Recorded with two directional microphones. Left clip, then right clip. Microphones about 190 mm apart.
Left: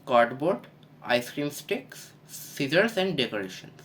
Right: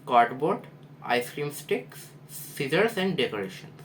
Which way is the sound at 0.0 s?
50° left (ahead or behind).